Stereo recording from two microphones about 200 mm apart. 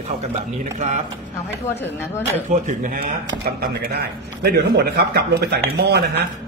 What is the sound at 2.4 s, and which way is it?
A man's voice, 40° right (ahead or behind).